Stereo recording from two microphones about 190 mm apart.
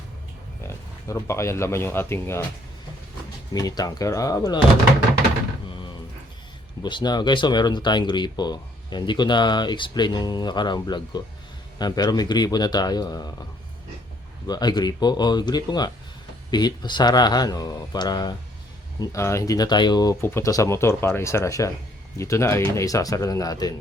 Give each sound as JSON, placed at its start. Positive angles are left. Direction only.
{"t": 0.6, "sound": "speech", "side_deg": 15}
{"t": 3.5, "sound": "speech", "side_deg": 20}
{"t": 5.6, "sound": "a sound", "side_deg": 25}
{"t": 6.8, "sound": "speech", "side_deg": 25}
{"t": 14.4, "sound": "speech", "side_deg": 20}